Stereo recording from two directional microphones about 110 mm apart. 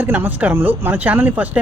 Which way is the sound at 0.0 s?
15° right (ahead or behind).